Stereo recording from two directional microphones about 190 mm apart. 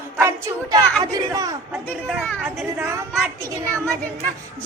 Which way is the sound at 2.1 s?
Centre (ahead or behind).